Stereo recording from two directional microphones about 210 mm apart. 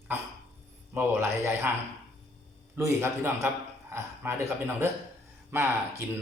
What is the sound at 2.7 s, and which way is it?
A man's voice, 10° right (ahead or behind).